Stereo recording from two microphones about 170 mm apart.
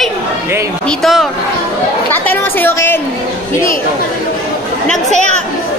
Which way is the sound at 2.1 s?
10° left (ahead or behind).